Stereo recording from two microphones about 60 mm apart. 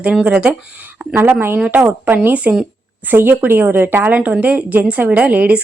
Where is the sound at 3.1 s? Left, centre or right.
Right.